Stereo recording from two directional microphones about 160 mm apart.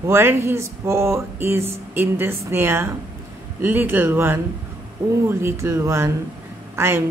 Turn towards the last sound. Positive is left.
turn(degrees=-15)  # may be behind; listen again after turning